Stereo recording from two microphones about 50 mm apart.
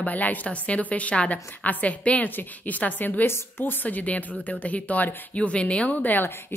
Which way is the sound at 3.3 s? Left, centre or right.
Left.